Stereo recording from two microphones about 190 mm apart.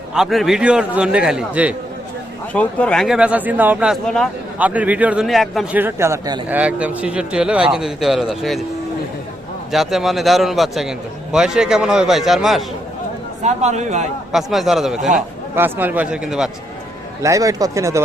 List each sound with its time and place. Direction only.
0.1 s a man's voice: centre (ahead or behind)
2.5 s a man's voice: 10° left (ahead or behind)
5.8 s a man's voice: 15° right (ahead or behind)
6.5 s a man's voice: 5° right (ahead or behind)
9.7 s a man's voice: centre (ahead or behind)
13.4 s speech: 35° right (ahead or behind)
14.3 s a man's voice: centre (ahead or behind)
17.2 s a man's voice: 15° right (ahead or behind)